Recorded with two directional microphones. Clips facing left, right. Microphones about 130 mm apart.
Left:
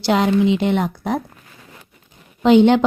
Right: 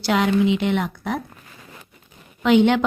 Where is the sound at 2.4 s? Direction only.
30° left (ahead or behind).